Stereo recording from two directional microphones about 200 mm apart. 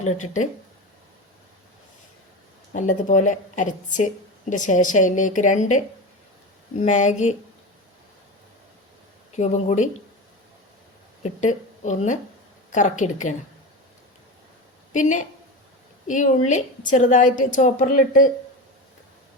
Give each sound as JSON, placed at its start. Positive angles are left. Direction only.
{"t": 0.0, "sound": "a woman's voice", "side_deg": 35}
{"t": 2.7, "sound": "a woman's voice", "side_deg": 40}
{"t": 9.3, "sound": "a woman's voice", "side_deg": 35}
{"t": 11.2, "sound": "a woman's voice", "side_deg": 40}
{"t": 14.9, "sound": "a woman's voice", "side_deg": 40}